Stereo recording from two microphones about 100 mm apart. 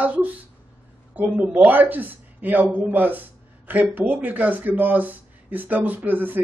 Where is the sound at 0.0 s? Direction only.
15° right (ahead or behind).